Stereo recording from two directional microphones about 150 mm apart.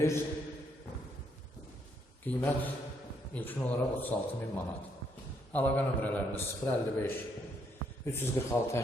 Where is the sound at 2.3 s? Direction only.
10° left (ahead or behind).